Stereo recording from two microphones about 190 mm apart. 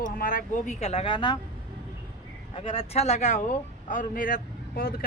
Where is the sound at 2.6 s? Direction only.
30° left (ahead or behind); by 4.9 s 50° left (ahead or behind).